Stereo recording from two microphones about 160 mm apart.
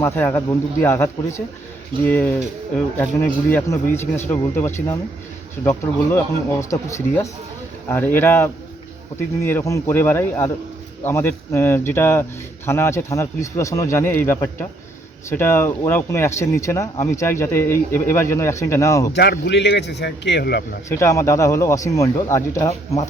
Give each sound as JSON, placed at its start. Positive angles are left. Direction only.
{"t": 0.0, "sound": "speech", "side_deg": 15}
{"t": 19.1, "sound": "speech", "side_deg": 90}
{"t": 20.9, "sound": "speech", "side_deg": 20}